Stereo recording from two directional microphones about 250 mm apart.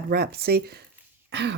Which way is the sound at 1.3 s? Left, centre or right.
Right.